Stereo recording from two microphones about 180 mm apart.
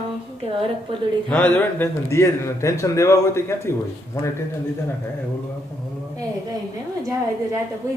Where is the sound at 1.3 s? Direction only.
10° left (ahead or behind).